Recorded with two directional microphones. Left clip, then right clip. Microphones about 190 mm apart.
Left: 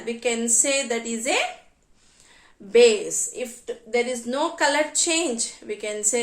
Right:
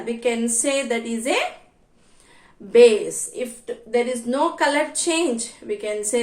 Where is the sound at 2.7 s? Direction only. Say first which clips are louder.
Right 3 dB; 20° left (ahead or behind).